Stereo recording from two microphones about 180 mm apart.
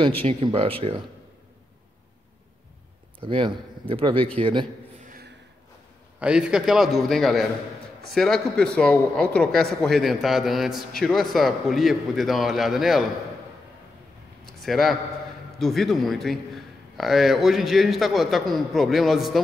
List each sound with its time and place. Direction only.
0.2 s speech: 30° right (ahead or behind)
3.2 s speech: 30° right (ahead or behind)
5.0 s a sound: 55° right (ahead or behind)
6.1 s a man's voice: 5° right (ahead or behind)
14.6 s a man's voice: centre (ahead or behind)